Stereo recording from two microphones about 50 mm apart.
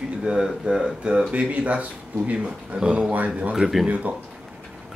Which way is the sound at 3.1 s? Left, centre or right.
Right.